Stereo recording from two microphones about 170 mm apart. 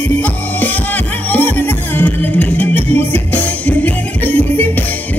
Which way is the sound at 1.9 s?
10° left (ahead or behind).